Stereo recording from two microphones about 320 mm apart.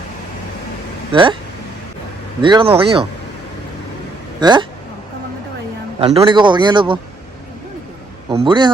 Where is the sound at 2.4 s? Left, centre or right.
Centre.